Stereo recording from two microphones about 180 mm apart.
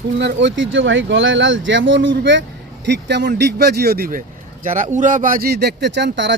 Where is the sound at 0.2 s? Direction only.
80° right.